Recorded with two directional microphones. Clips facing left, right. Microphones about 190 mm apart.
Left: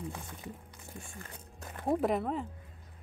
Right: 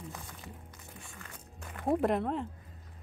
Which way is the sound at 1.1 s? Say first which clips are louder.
Left 2 dB; 35° left (ahead or behind).